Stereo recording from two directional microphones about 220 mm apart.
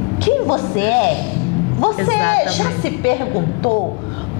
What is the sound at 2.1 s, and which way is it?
A woman's voice, 15° left (ahead or behind).